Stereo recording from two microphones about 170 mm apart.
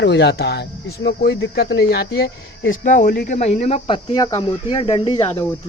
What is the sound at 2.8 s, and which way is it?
Speech, 50° left (ahead or behind).